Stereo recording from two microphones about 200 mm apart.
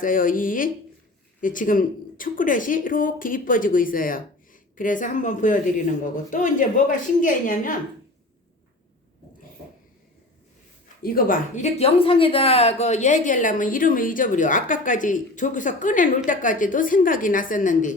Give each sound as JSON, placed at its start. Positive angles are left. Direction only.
{"t": 0.0, "sound": "speech", "side_deg": 45}
{"t": 11.0, "sound": "speech", "side_deg": 45}